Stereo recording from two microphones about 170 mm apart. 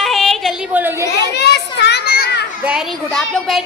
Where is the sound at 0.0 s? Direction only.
Centre (ahead or behind).